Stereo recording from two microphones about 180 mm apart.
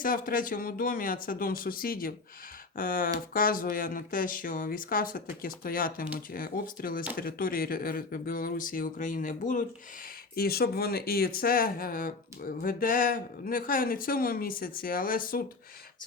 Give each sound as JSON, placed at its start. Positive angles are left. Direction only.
{"t": 0.0, "sound": "speech", "side_deg": 50}
{"t": 10.3, "sound": "speech", "side_deg": 60}